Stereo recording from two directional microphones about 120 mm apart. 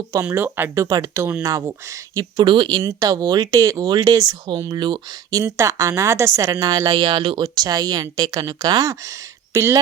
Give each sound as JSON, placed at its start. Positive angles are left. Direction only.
{"t": 0.1, "sound": "speech", "side_deg": -20}
{"t": 5.4, "sound": "speech", "side_deg": -25}
{"t": 6.5, "sound": "speech", "side_deg": -35}
{"t": 9.5, "sound": "speech", "side_deg": -20}